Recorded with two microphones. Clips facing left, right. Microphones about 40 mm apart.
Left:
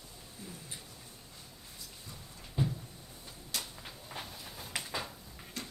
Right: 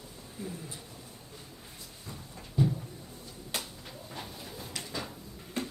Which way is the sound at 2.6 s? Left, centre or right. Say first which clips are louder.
Right 6 dB; left.